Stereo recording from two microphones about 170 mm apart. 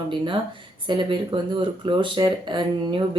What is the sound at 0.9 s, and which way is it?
Speech, 30° right (ahead or behind).